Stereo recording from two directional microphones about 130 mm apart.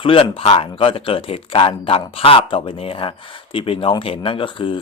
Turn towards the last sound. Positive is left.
turn(degrees=40)  # may be behind; listen again after turning